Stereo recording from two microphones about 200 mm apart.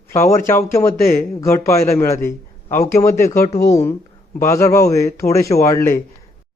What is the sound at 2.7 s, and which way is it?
Speech, 35° left (ahead or behind).